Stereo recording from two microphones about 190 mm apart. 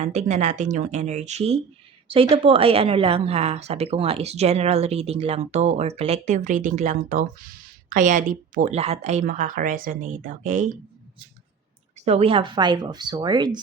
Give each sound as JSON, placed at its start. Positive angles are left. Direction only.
{"t": 0.0, "sound": "a woman's voice", "side_deg": -35}
{"t": 12.0, "sound": "speech", "side_deg": -30}